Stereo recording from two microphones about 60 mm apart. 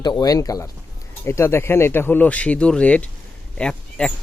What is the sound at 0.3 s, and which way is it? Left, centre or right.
Speech, left.